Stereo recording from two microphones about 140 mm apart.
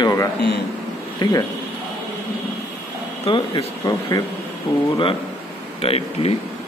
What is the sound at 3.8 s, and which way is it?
Speech, 25° left (ahead or behind).